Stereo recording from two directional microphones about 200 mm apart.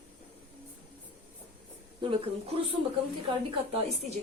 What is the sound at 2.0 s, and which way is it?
Speech, 25° right (ahead or behind).